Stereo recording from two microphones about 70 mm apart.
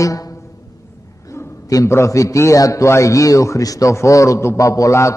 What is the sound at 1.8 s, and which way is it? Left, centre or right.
A man's voice, left.